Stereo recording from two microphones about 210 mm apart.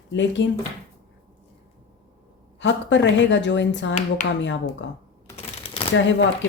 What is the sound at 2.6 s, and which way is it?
Speech, 60° left (ahead or behind).